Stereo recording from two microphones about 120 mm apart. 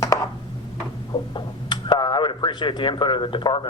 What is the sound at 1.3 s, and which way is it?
Speech, 40° left (ahead or behind).